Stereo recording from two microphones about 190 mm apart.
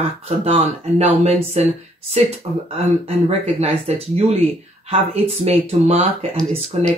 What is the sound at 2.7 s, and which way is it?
Speech, 35° right (ahead or behind).